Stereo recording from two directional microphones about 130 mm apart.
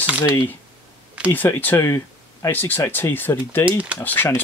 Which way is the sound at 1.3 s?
15° left (ahead or behind).